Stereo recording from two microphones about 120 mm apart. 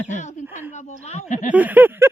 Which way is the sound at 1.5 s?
15° right (ahead or behind).